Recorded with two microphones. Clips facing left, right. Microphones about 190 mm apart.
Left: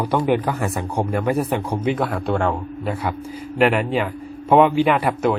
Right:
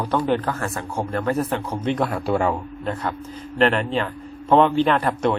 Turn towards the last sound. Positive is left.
turn(degrees=5)  # may be behind; listen again after turning